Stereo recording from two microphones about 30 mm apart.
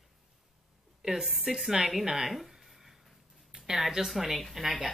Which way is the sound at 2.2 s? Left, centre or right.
Centre.